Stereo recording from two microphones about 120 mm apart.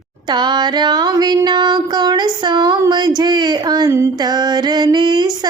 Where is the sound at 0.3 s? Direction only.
35° right (ahead or behind).